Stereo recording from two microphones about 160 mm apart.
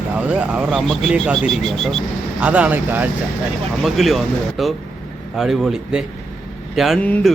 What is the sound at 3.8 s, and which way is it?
Mantra, centre (ahead or behind).